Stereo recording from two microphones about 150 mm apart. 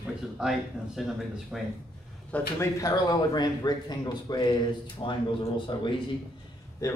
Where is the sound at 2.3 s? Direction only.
10° left (ahead or behind).